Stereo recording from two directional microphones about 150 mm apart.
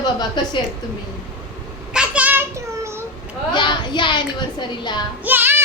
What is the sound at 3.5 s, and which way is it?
A woman's voice, 30° left (ahead or behind).